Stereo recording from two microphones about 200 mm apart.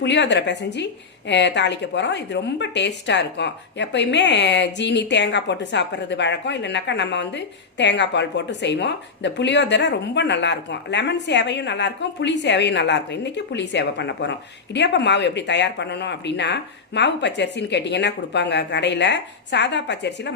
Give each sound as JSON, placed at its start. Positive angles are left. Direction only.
{"t": 0.0, "sound": "a woman's voice", "side_deg": 60}